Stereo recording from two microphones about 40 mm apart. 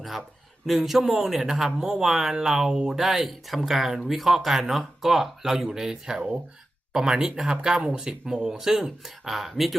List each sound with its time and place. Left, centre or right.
0.7 s speech: centre